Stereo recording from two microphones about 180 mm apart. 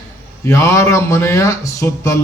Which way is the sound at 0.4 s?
15° left (ahead or behind).